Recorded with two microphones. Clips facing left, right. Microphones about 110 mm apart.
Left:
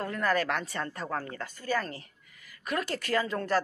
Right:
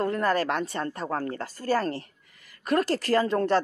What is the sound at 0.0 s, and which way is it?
Speech, 30° right (ahead or behind).